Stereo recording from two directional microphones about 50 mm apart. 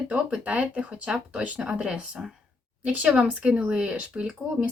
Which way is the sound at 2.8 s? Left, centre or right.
Right.